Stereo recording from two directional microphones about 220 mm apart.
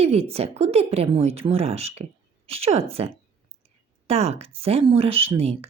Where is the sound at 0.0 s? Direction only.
25° right (ahead or behind).